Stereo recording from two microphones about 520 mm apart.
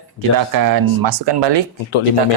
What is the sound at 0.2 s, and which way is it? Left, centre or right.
Speech, right.